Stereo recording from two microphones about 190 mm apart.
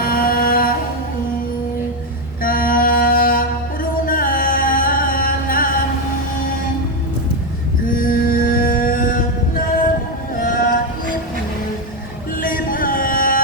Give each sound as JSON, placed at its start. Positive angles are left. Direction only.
{"t": 0.0, "sound": "a sound", "side_deg": 50}
{"t": 2.4, "sound": "a sound", "side_deg": 50}
{"t": 3.9, "sound": "music", "side_deg": 50}
{"t": 7.9, "sound": "mantra", "side_deg": 45}
{"t": 10.3, "sound": "music", "side_deg": 45}
{"t": 12.4, "sound": "music", "side_deg": 45}